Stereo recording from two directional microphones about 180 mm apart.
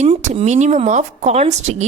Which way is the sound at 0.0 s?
40° right (ahead or behind).